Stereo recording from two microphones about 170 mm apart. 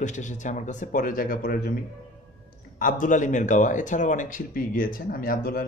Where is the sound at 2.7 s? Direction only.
50° left (ahead or behind).